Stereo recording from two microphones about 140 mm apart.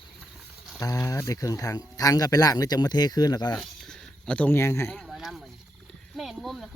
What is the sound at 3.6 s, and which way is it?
Speech, 5° left (ahead or behind).